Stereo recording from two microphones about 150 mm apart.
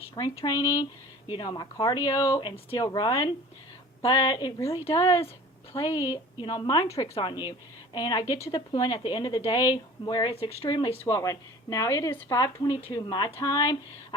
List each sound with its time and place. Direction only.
0.2 s a woman's voice: 20° left (ahead or behind)
6.3 s a woman's voice: 30° left (ahead or behind)